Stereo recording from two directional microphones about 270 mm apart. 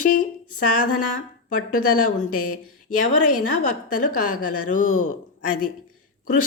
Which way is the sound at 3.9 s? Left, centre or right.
Left.